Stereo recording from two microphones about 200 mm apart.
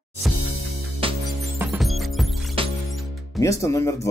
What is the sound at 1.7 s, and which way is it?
Music, centre (ahead or behind).